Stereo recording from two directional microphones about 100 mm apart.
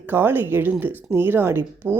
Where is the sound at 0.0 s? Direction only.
20° right (ahead or behind).